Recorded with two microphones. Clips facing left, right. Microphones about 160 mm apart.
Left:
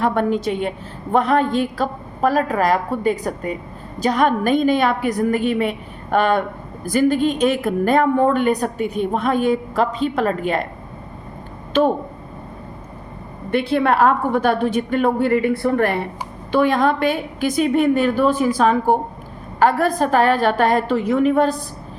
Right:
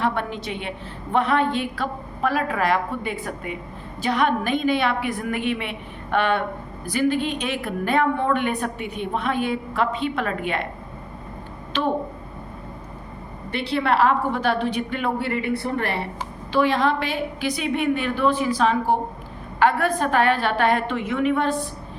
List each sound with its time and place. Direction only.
0.0 s a woman's voice: 45° left (ahead or behind)
11.7 s a woman's voice: 45° left (ahead or behind)
13.5 s a woman's voice: 50° left (ahead or behind)